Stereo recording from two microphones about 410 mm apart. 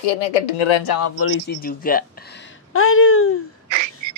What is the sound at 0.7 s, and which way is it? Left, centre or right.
Speech, left.